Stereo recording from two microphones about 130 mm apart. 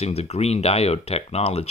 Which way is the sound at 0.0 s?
55° left (ahead or behind).